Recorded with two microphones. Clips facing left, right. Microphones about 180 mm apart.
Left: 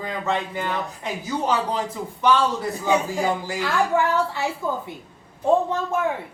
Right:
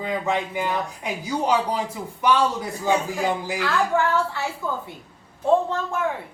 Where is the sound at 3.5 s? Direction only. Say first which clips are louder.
Even; 15° left (ahead or behind).